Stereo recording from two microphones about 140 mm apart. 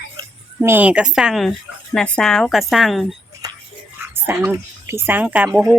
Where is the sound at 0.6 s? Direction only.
15° right (ahead or behind).